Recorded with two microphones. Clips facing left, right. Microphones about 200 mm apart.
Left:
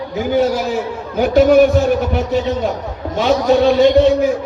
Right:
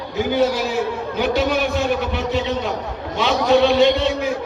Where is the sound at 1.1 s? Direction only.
45° left (ahead or behind).